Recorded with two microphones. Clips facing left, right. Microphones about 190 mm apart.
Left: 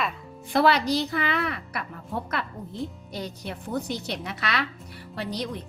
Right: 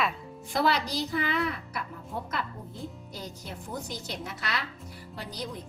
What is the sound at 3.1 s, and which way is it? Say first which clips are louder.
Speech: left 6 dB; 65° left (ahead or behind).